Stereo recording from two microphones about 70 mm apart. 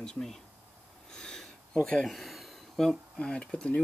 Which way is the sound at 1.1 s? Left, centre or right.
Centre.